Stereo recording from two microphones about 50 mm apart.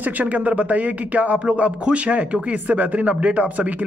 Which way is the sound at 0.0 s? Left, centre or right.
Right.